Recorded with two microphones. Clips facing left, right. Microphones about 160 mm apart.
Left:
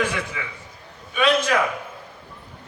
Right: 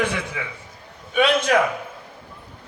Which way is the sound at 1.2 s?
60° right (ahead or behind).